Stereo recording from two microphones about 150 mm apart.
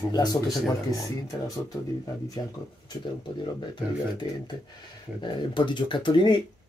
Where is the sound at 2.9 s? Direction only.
30° left (ahead or behind).